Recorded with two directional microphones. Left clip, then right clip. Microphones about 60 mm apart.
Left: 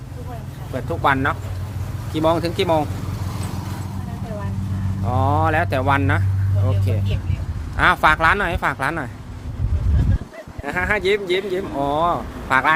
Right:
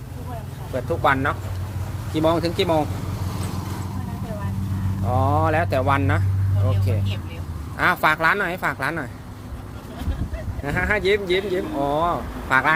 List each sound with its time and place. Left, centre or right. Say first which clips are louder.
1.0 s speech: left 2 dB; left
5.0 s speech: left 1 dB; left
7.8 s speech: left 4 dB; left
10.6 s speech: left 1 dB; left